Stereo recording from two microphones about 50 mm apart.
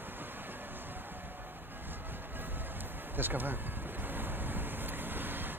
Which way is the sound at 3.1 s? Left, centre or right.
Right.